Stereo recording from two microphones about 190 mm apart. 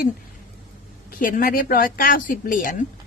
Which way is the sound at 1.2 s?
50° left (ahead or behind).